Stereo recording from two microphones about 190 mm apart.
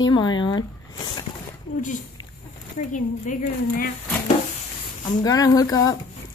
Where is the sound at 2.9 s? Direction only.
45° left (ahead or behind).